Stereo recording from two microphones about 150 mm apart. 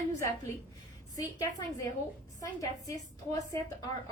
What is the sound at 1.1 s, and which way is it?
A woman's voice, 25° left (ahead or behind).